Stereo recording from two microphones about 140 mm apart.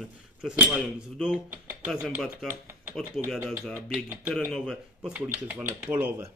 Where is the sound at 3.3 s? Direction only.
Centre (ahead or behind).